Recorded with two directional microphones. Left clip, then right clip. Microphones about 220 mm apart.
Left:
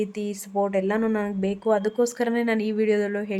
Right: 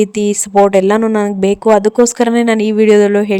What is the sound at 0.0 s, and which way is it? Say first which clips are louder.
A woman's voice: right 15 dB; 40° right (ahead or behind).